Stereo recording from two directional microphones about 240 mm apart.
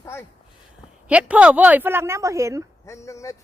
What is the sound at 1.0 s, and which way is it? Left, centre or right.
A woman's voice, centre.